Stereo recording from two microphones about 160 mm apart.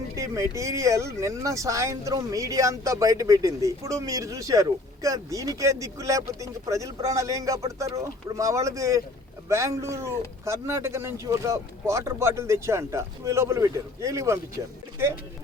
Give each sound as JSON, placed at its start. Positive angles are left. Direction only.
{"t": 0.2, "sound": "speech", "side_deg": -20}